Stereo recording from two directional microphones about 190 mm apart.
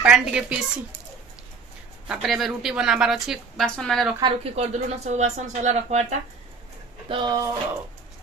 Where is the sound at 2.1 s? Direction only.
Centre (ahead or behind).